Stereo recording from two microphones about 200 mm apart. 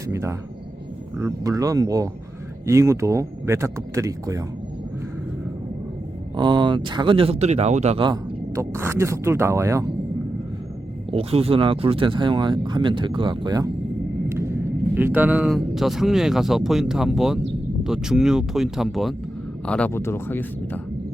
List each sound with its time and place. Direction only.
0.1 s a sound: 15° right (ahead or behind)
1.2 s speech: 15° right (ahead or behind)
6.3 s speech: 25° right (ahead or behind)
11.1 s speech: 30° right (ahead or behind); by 20.8 s 10° left (ahead or behind)